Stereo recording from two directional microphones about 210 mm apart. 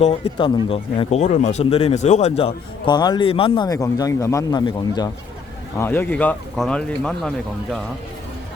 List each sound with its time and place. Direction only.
0.0 s speech: 30° left (ahead or behind); by 7.8 s 5° left (ahead or behind)